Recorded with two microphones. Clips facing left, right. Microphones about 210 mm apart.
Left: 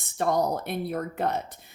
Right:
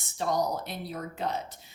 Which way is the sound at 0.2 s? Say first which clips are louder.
Left 4 dB; 55° left (ahead or behind).